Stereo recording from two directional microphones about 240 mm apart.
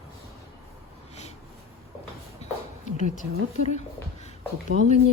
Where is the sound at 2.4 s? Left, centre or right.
Left.